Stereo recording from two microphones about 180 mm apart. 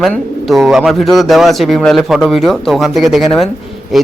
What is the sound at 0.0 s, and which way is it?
A man's voice, centre (ahead or behind).